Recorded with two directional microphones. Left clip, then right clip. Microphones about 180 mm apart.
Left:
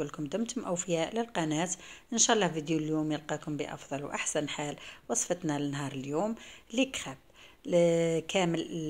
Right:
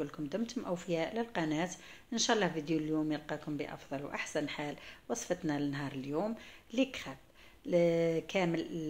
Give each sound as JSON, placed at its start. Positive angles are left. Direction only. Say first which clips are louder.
{"t": 0.0, "sound": "speech", "louder": "left 3 dB", "side_deg": 35}